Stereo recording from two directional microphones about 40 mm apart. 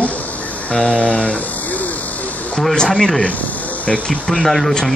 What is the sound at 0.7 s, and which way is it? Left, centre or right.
Speech, left.